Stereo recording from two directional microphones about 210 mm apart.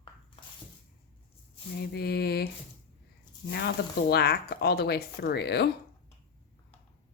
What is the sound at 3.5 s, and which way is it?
Speech, 50° left (ahead or behind).